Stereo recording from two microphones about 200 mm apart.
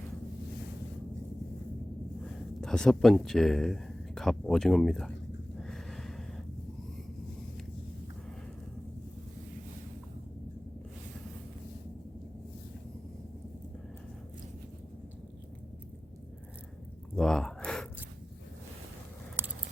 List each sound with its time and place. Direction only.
2.6 s speech: 5° left (ahead or behind)
5.5 s snort: centre (ahead or behind)
17.2 s gasp: 5° left (ahead or behind)
19.4 s a sound: 10° right (ahead or behind)